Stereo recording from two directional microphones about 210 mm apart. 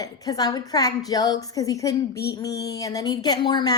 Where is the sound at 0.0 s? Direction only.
20° left (ahead or behind).